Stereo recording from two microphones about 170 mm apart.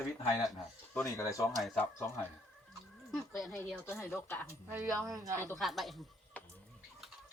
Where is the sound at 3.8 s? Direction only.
15° left (ahead or behind).